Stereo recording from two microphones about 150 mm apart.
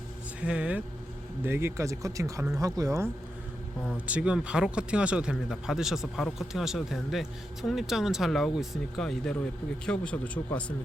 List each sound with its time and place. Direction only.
0.4 s speech: 5° right (ahead or behind)
3.8 s speech: 10° right (ahead or behind); by 10.6 s 10° left (ahead or behind)